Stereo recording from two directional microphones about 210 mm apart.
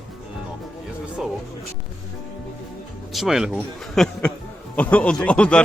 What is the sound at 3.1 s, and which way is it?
A man's voice, centre (ahead or behind).